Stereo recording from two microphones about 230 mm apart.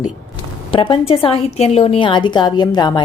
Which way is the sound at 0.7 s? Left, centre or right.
Left.